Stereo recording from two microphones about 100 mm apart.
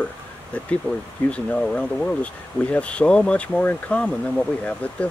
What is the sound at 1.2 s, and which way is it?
Speech, 10° left (ahead or behind).